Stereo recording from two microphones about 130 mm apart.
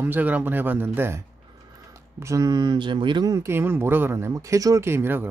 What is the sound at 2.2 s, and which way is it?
Speech, 25° right (ahead or behind).